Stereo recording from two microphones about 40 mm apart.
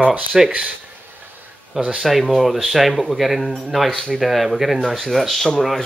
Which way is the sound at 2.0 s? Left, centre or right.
Centre.